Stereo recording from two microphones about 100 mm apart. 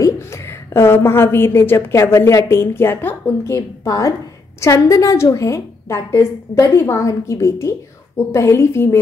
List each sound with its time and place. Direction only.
0.0 s a woman's voice: 25° left (ahead or behind)